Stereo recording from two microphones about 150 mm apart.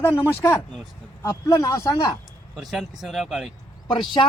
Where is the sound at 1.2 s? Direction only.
20° left (ahead or behind).